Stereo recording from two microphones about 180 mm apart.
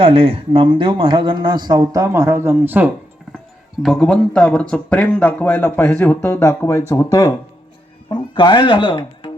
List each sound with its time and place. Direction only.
0.0 s speech: 30° right (ahead or behind); by 2.9 s 10° right (ahead or behind)
3.8 s speech: centre (ahead or behind); by 9.3 s 25° left (ahead or behind)